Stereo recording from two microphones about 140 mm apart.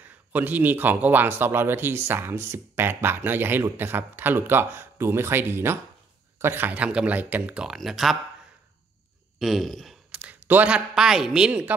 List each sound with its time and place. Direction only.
0.3 s speech: 10° right (ahead or behind)
9.4 s speech: centre (ahead or behind)
10.1 s a man's voice: 10° right (ahead or behind)